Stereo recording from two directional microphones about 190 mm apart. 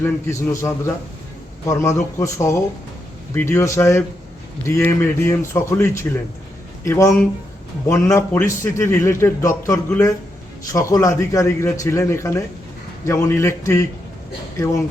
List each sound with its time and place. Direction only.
0.0 s a man's voice: 15° left (ahead or behind)